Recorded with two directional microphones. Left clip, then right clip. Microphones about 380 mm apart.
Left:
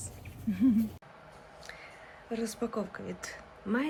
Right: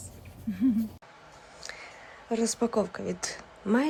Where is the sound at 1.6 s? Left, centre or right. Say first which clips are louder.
Right 6 dB; centre.